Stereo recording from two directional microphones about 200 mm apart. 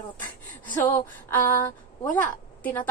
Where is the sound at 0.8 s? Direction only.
10° left (ahead or behind).